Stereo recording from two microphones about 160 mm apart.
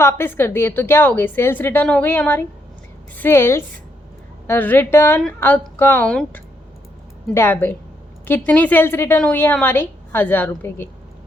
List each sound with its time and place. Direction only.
0.0 s a woman's voice: 15° left (ahead or behind)